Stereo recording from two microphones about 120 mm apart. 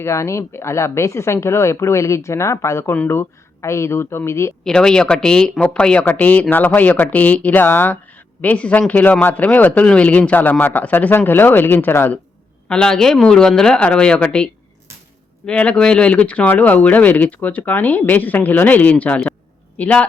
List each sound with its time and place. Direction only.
0.0 s speech: 25° left (ahead or behind)
4.6 s speech: 5° left (ahead or behind)
12.6 s speech: 5° left (ahead or behind)